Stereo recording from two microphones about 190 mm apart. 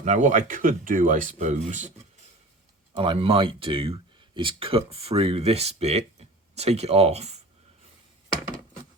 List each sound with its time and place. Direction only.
0.0 s speech: 40° right (ahead or behind)
2.9 s speech: 25° right (ahead or behind)